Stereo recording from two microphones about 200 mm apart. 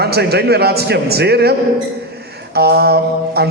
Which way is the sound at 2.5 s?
55° right (ahead or behind).